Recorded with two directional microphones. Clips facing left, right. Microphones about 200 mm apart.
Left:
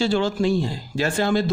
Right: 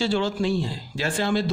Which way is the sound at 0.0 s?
45° left (ahead or behind).